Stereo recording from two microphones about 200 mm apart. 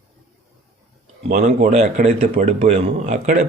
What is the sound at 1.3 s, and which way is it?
Speech, 40° right (ahead or behind).